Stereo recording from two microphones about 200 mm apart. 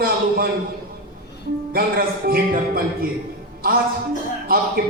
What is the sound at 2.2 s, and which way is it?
Speech, 50° right (ahead or behind).